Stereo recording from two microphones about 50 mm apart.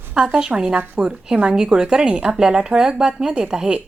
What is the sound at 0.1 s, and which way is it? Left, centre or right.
Speech, centre.